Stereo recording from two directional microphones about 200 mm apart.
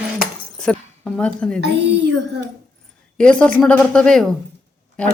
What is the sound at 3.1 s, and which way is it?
Speech, 5° left (ahead or behind).